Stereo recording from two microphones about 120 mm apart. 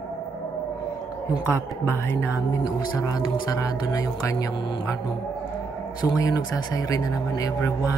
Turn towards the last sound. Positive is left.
turn(degrees=30)  # may be behind; listen again after turning